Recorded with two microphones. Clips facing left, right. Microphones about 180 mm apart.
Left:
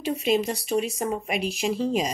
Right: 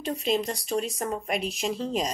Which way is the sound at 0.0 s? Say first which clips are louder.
Left 3 dB; 5° left (ahead or behind).